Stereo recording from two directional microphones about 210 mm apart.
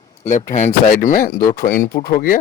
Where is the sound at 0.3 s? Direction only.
35° left (ahead or behind).